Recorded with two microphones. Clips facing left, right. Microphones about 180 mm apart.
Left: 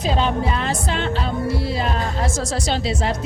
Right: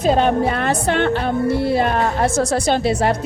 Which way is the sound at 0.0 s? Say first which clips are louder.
Right 5 dB; 55° right (ahead or behind).